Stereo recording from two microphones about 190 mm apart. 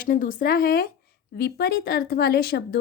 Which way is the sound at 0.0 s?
45° left (ahead or behind).